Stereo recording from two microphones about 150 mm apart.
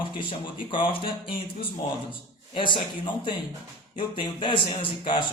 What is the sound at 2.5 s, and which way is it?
Speech, 30° left (ahead or behind).